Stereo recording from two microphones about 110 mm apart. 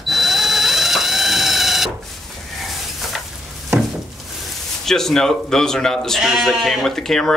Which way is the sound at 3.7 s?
25° right (ahead or behind).